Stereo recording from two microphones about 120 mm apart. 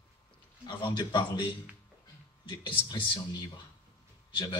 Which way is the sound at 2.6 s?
40° left (ahead or behind).